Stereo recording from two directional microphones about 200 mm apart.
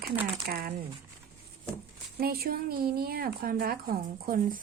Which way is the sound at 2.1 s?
50° right (ahead or behind).